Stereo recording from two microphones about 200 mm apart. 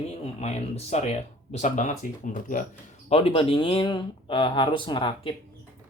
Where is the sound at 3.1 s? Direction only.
30° left (ahead or behind).